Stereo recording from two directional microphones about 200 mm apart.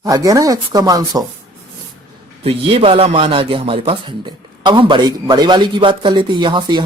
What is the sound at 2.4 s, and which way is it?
A man's voice, 30° right (ahead or behind).